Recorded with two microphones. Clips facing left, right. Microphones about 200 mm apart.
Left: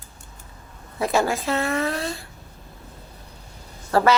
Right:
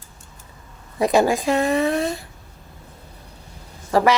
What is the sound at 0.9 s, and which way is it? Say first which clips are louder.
Speech: right 5 dB; 15° right (ahead or behind).